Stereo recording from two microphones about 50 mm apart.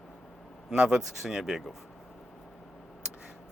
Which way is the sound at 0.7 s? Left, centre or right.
Centre.